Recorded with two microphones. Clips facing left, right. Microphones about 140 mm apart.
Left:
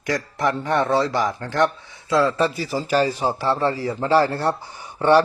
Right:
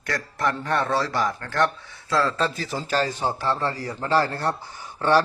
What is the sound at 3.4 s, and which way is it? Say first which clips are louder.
Speech: left 7 dB; 15° left (ahead or behind).